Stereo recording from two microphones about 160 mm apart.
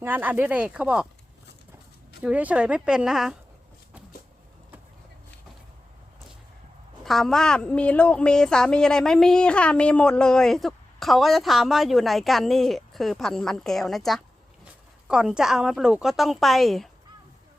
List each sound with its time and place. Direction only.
0.0 s speech: 10° right (ahead or behind)
2.2 s speech: 10° right (ahead or behind)
7.0 s a woman's voice: centre (ahead or behind)